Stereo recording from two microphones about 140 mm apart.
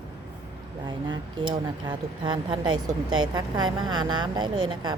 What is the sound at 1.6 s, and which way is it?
Speech, 30° right (ahead or behind).